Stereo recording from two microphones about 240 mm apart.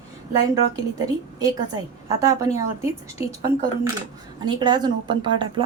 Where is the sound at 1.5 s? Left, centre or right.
Centre.